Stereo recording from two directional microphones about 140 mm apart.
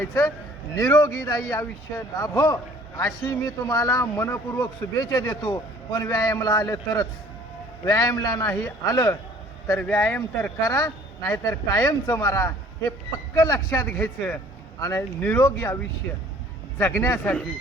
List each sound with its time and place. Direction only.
0.0 s a man's voice: 20° left (ahead or behind)
10.6 s a man's voice: 20° left (ahead or behind)